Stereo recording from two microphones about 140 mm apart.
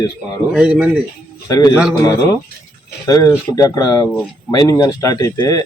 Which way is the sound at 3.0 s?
25° left (ahead or behind).